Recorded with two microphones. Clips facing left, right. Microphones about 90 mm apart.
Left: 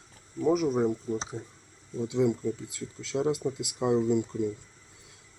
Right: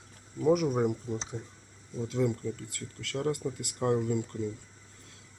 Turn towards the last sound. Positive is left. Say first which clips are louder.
# left 5 dB
turn(degrees=20)  # may be behind; listen again after turning